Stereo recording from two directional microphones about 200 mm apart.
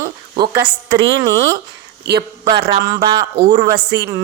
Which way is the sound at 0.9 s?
65° right (ahead or behind).